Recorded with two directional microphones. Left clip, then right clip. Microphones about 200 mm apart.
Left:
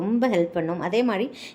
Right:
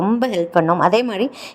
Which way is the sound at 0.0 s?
25° right (ahead or behind).